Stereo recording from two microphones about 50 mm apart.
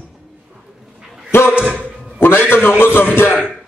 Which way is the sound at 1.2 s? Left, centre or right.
Left.